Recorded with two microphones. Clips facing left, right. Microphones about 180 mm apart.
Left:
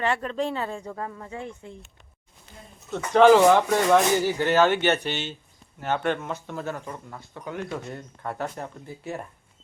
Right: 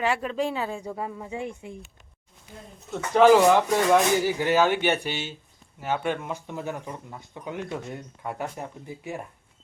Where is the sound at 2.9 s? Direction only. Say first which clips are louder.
Left 1 dB; 10° right (ahead or behind).